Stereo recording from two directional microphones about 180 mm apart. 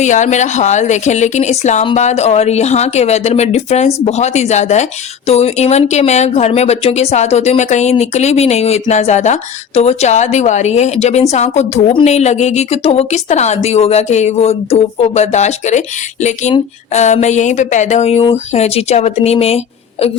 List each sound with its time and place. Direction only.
0.0 s speech: 40° left (ahead or behind)